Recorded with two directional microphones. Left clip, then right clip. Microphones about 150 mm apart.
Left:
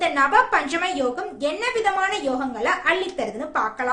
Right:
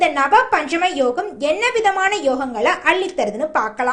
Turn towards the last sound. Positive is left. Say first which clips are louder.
# right 5 dB
turn(degrees=-35)  # may be behind; listen again after turning